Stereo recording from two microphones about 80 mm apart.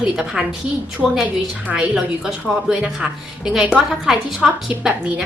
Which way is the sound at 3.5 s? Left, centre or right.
Centre.